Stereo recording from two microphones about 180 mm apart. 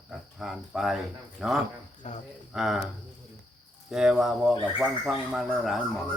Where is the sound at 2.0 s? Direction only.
40° left (ahead or behind).